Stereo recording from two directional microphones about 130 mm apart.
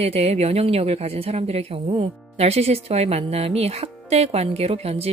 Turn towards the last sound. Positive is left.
turn(degrees=-50)  # may be behind; listen again after turning